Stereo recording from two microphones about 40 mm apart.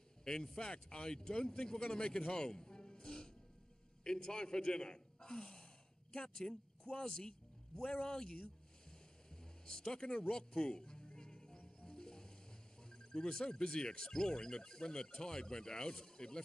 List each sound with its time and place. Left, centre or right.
0.2 s a sound: centre
0.6 s a man's voice: left
11.1 s music: centre
12.8 s speech: centre